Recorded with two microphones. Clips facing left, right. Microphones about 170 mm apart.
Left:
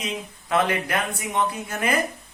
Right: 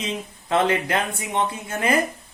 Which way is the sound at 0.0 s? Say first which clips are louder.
Right 2 dB; 25° right (ahead or behind).